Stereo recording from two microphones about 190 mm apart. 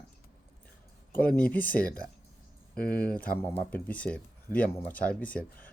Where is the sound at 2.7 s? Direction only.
50° left (ahead or behind).